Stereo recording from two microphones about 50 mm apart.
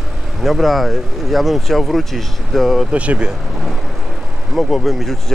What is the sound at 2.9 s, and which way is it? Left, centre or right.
Speech, right.